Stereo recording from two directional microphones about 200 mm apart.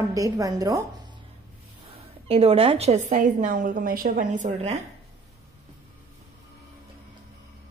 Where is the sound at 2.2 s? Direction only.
30° right (ahead or behind).